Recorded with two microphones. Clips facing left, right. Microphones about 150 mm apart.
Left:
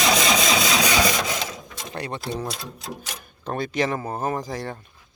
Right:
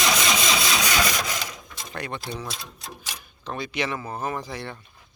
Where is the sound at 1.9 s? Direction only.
30° left (ahead or behind).